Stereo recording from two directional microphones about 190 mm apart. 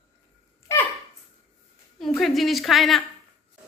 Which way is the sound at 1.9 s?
Centre (ahead or behind).